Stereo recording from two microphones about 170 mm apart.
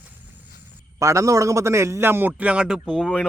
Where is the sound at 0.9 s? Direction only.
20° right (ahead or behind).